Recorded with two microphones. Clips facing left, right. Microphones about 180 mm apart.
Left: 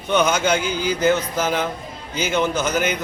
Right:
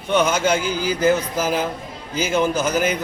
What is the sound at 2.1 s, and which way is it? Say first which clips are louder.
Speech: right 1 dB; 5° right (ahead or behind).